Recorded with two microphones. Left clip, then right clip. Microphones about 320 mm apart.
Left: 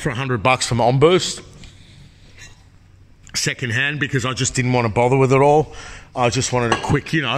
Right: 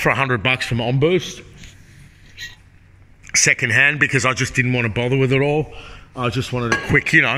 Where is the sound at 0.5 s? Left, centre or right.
Left.